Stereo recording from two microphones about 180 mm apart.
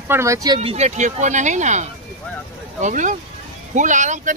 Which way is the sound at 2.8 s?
45° right (ahead or behind).